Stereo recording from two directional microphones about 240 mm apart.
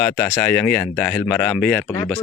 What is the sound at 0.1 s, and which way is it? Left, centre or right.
Speech, centre.